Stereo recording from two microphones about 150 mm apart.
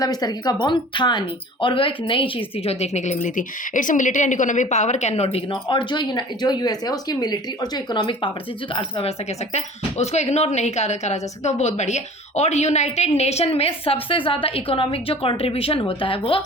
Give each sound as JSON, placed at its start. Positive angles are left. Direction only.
{"t": 0.0, "sound": "speech", "side_deg": 25}
{"t": 5.5, "sound": "speech", "side_deg": 30}